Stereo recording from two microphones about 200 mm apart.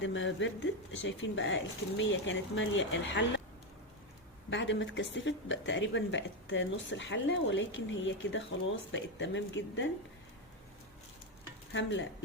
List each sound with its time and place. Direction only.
0.0 s speech: 70° left (ahead or behind)
4.4 s speech: 65° left (ahead or behind)
11.7 s speech: 65° left (ahead or behind)